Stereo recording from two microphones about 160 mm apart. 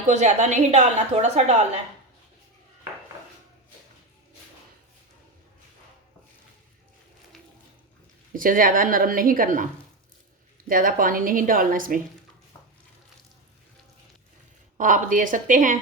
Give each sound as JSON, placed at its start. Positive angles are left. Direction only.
{"t": 0.1, "sound": "a woman's voice", "side_deg": -50}
{"t": 8.3, "sound": "a woman's voice", "side_deg": -60}
{"t": 10.7, "sound": "a woman's voice", "side_deg": -60}
{"t": 14.8, "sound": "a woman's voice", "side_deg": -55}